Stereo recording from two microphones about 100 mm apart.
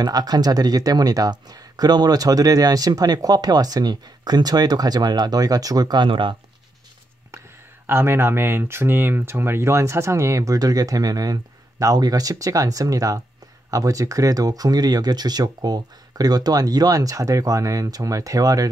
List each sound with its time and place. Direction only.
0.0 s speech: 40° right (ahead or behind)
7.8 s speech: 25° right (ahead or behind)